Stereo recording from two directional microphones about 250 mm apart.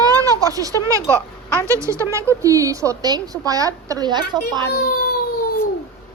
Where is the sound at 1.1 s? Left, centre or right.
Centre.